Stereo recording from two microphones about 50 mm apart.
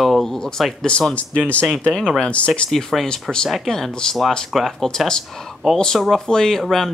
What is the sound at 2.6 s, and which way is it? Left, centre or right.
Speech, centre.